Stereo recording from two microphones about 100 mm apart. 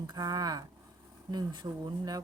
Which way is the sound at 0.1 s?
40° right (ahead or behind).